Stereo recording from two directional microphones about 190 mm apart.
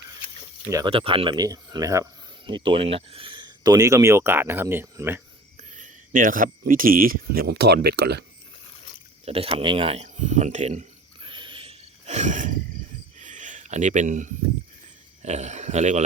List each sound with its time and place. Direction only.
0.9 s speech: 30° right (ahead or behind); by 5.2 s 10° right (ahead or behind)
5.7 s speech: 45° right (ahead or behind); by 8.2 s 60° right (ahead or behind)
9.2 s a sound: 30° right (ahead or behind)
15.2 s speech: 35° right (ahead or behind)